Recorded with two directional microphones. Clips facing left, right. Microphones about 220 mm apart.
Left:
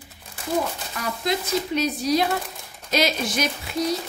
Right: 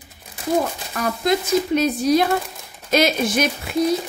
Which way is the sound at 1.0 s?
50° right (ahead or behind).